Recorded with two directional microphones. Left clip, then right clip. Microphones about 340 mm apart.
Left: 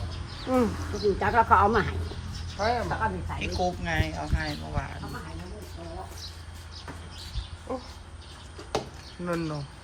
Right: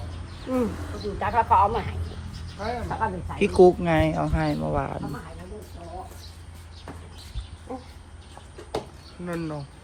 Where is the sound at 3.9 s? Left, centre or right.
Centre.